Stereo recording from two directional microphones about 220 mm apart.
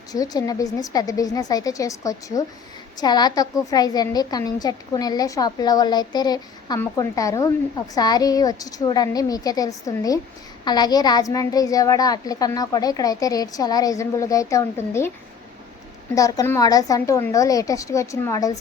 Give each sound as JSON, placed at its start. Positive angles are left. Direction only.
{"t": 0.1, "sound": "a woman's voice", "side_deg": 15}
{"t": 16.1, "sound": "a woman's voice", "side_deg": 15}